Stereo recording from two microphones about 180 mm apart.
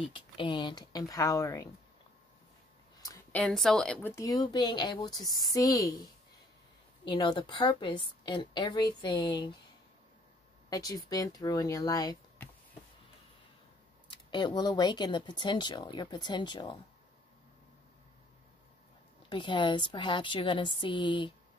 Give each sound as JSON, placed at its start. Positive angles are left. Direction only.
{"t": 0.0, "sound": "speech", "side_deg": 25}
{"t": 3.3, "sound": "speech", "side_deg": 5}
{"t": 7.1, "sound": "speech", "side_deg": 25}
{"t": 10.7, "sound": "speech", "side_deg": 20}
{"t": 14.0, "sound": "speech", "side_deg": 25}
{"t": 19.2, "sound": "speech", "side_deg": 25}